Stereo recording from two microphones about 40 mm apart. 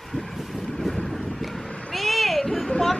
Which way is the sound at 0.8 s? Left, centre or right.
Centre.